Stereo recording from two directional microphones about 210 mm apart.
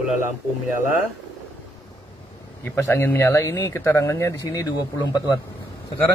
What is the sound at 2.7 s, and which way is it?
Speech, 10° left (ahead or behind).